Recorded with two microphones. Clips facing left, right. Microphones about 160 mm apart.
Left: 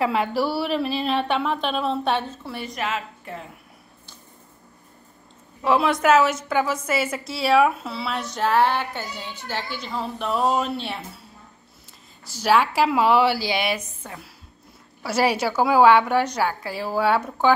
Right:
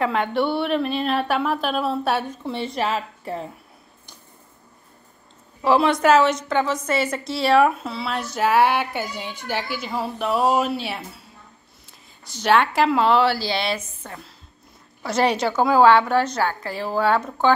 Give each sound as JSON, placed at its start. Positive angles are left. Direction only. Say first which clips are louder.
{"t": 0.0, "sound": "a woman's voice", "louder": "right 1 dB", "side_deg": 5}
{"t": 2.5, "sound": "a woman's voice", "louder": "right 4 dB", "side_deg": -30}
{"t": 5.6, "sound": "a woman's voice", "louder": "right 2 dB", "side_deg": 0}
{"t": 12.3, "sound": "a woman's voice", "louder": "right 1 dB", "side_deg": 5}